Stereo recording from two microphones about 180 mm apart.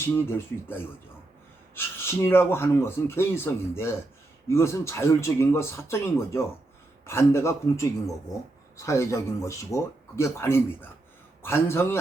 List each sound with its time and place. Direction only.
0.0 s speech: 15° left (ahead or behind)